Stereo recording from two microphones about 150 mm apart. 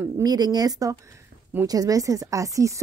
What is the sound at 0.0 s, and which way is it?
Speech, 25° right (ahead or behind).